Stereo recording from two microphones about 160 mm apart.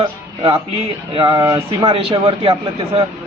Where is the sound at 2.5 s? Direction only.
20° right (ahead or behind).